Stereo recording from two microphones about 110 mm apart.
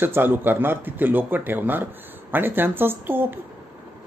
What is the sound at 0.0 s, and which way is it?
A man's voice, 20° right (ahead or behind).